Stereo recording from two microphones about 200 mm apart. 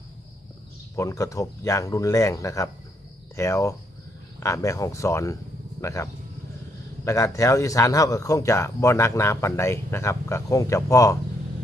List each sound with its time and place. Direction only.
0.9 s speech: 15° left (ahead or behind)